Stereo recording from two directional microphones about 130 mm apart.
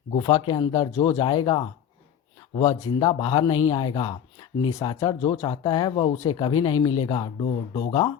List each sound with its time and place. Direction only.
0.2 s speech: 35° left (ahead or behind)
1.2 s speech: 35° left (ahead or behind)
2.6 s speech: 25° left (ahead or behind)
7.4 s speech: 50° left (ahead or behind)